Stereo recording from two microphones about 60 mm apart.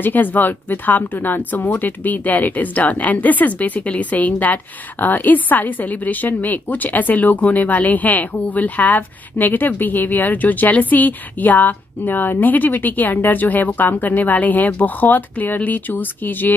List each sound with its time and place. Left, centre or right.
0.0 s speech: left